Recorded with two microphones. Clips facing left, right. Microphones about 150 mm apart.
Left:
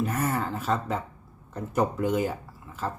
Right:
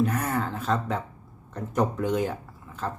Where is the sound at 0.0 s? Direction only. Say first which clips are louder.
Right 1 dB; 5° left (ahead or behind).